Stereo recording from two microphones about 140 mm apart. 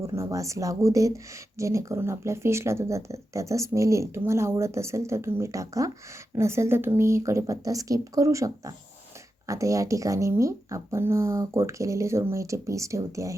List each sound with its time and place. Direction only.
0.1 s speech: 20° right (ahead or behind)